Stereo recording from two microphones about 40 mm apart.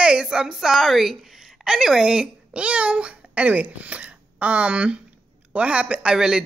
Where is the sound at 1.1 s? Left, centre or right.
Centre; by 6.1 s right.